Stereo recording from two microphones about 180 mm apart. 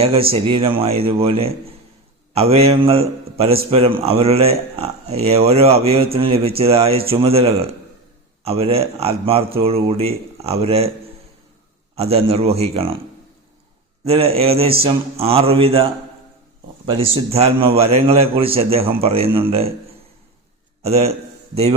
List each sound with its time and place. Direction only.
0.0 s a man's voice: 30° right (ahead or behind)
11.9 s a man's voice: 35° right (ahead or behind)
14.0 s a man's voice: 35° right (ahead or behind)
20.8 s a man's voice: 35° right (ahead or behind)